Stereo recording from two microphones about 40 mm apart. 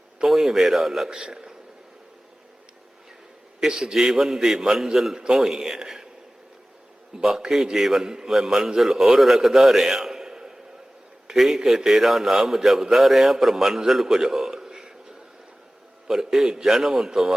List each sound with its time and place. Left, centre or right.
0.3 s a man's voice: centre
1.1 s a man's voice: centre
3.6 s a man's voice: centre
7.2 s a man's voice: centre
14.5 s a sound: centre
16.0 s a man's voice: centre